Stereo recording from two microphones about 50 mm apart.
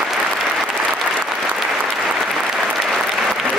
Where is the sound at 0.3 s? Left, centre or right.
Centre.